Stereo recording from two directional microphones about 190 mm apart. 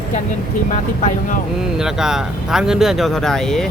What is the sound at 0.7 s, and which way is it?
Speech, 40° left (ahead or behind).